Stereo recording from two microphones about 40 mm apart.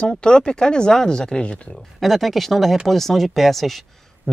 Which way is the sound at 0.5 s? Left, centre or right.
Left.